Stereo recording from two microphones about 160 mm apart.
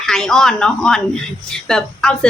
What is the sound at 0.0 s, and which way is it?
Speech, 5° left (ahead or behind).